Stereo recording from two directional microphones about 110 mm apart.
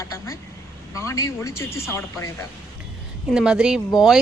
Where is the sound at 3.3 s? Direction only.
5° right (ahead or behind).